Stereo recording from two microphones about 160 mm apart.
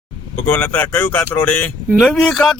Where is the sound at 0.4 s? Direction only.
10° left (ahead or behind).